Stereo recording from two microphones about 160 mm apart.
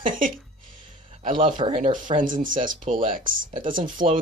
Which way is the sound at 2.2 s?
55° right (ahead or behind).